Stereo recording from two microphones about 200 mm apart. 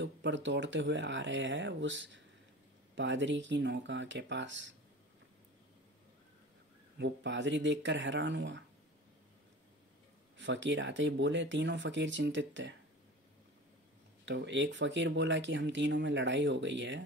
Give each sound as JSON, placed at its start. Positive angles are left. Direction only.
{"t": 0.0, "sound": "speech", "side_deg": -65}
{"t": 7.0, "sound": "speech", "side_deg": -65}
{"t": 10.3, "sound": "speech", "side_deg": -65}
{"t": 14.2, "sound": "speech", "side_deg": -60}